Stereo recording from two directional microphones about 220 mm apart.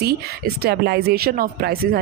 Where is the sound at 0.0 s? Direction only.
45° right (ahead or behind).